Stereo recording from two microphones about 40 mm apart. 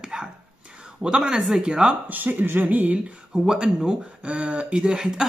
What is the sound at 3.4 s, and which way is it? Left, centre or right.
Speech, centre.